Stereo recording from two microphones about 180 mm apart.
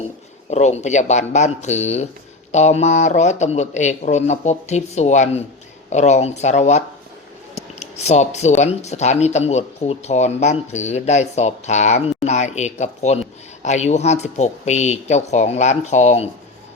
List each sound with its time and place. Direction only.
0.5 s speech: 40° left (ahead or behind)